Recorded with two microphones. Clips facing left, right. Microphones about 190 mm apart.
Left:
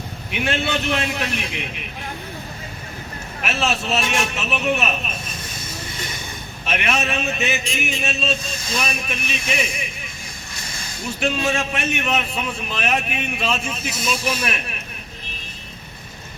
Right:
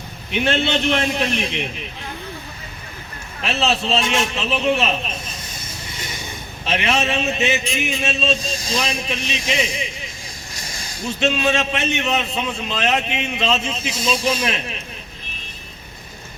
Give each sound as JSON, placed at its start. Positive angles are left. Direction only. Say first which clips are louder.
{"t": 0.3, "sound": "a man's voice", "louder": "right 3 dB", "side_deg": -25}
{"t": 3.4, "sound": "a man's voice", "louder": "right 2 dB", "side_deg": -25}
{"t": 6.7, "sound": "a man's voice", "louder": "right 3 dB", "side_deg": -25}
{"t": 11.2, "sound": "a man's voice", "louder": "right 3 dB", "side_deg": -25}